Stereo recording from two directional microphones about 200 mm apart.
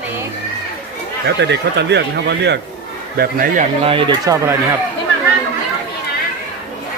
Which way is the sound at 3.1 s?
45° right (ahead or behind).